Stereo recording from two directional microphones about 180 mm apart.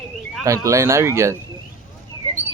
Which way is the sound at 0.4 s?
15° right (ahead or behind).